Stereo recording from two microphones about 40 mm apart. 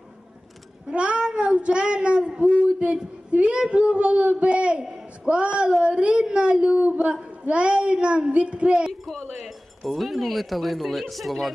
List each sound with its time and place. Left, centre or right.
0.9 s child singing: right
2.8 s speech: right
4.8 s a sound: centre
5.3 s speech: right
6.8 s speech: right
7.1 s speech: right
9.0 s speech: centre